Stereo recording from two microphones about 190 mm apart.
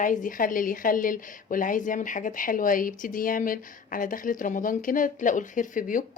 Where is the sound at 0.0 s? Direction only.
45° left (ahead or behind).